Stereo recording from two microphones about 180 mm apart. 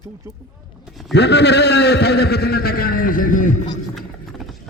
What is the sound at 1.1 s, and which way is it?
A man's voice, 70° left (ahead or behind).